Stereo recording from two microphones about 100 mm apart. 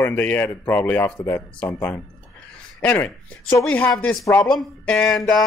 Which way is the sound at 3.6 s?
15° left (ahead or behind).